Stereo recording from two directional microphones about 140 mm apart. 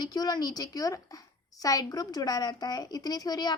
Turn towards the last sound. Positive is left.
turn(degrees=30)  # may be behind; listen again after turning